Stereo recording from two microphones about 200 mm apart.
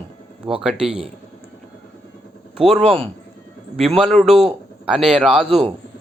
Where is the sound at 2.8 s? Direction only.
30° right (ahead or behind).